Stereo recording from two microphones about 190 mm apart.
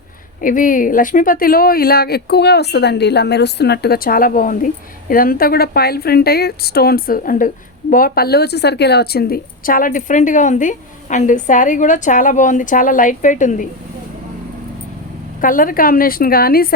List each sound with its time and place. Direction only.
0.4 s speech: 45° left (ahead or behind)
15.4 s speech: 45° left (ahead or behind)